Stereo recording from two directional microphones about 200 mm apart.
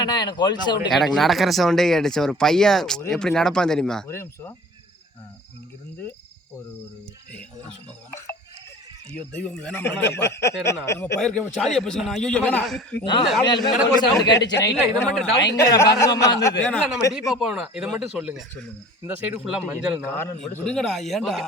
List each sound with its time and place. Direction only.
0.0 s speech: 20° left (ahead or behind)
0.9 s speech: centre (ahead or behind)
4.1 s speech: 15° left (ahead or behind)
9.1 s speech: 5° left (ahead or behind)
13.4 s speech: 20° left (ahead or behind)
15.1 s speech: centre (ahead or behind)
15.5 s speech: 15° left (ahead or behind)
16.6 s a man's voice: 5° left (ahead or behind)
20.1 s speech: 10° left (ahead or behind)